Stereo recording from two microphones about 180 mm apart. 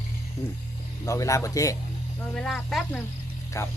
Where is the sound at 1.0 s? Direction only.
20° left (ahead or behind).